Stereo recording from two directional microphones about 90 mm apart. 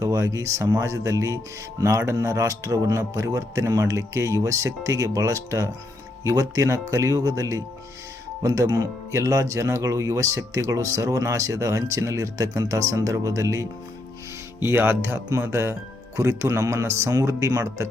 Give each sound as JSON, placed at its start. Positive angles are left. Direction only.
{"t": 0.0, "sound": "speech", "side_deg": -40}
{"t": 14.6, "sound": "speech", "side_deg": -25}